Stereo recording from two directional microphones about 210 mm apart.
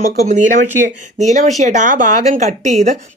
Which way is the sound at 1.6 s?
35° right (ahead or behind).